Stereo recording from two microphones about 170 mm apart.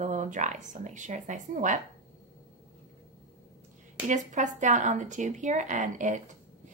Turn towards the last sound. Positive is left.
turn(degrees=-45)  # may be behind; listen again after turning